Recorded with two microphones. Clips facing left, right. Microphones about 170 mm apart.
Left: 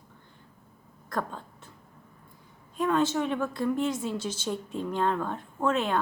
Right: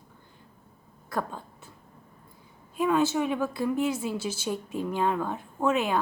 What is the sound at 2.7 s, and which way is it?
A woman's voice, 10° right (ahead or behind).